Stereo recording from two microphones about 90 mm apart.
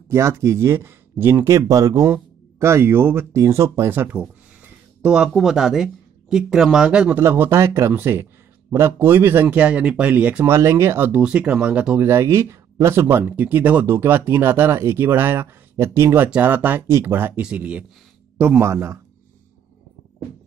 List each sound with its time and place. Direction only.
0.1 s speech: 30° right (ahead or behind)
2.6 s speech: 30° right (ahead or behind)
5.0 s speech: 10° right (ahead or behind)
7.2 s speech: 25° right (ahead or behind)
10.5 s speech: 35° right (ahead or behind)
11.1 s speech: 10° right (ahead or behind)
12.1 s speech: 30° right (ahead or behind)
13.4 s speech: 20° right (ahead or behind)
16.3 s speech: 20° right (ahead or behind)
17.4 s speech: 15° right (ahead or behind)
18.6 s speech: 30° right (ahead or behind)